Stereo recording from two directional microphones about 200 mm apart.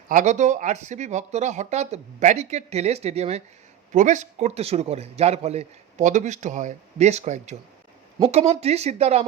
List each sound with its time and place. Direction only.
0.1 s a man's voice: 40° right (ahead or behind)